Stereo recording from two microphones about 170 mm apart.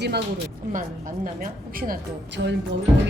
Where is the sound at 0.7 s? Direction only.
50° right (ahead or behind).